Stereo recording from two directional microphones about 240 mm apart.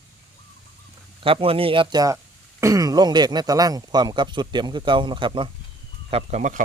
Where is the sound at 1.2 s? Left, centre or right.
Right.